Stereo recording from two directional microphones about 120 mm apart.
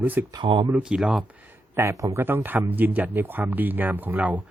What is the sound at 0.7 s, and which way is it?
Speech, 10° right (ahead or behind).